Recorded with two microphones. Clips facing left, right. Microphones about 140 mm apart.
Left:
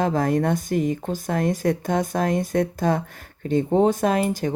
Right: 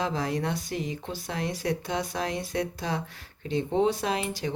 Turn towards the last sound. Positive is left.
turn(degrees=50)  # may be behind; listen again after turning